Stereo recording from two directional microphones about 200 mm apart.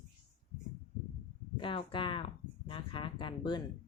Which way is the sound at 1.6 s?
25° left (ahead or behind).